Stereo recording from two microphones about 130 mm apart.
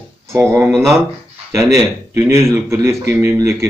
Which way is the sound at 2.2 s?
20° right (ahead or behind).